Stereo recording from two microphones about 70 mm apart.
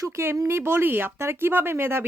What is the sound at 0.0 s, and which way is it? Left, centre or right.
A woman's voice, right.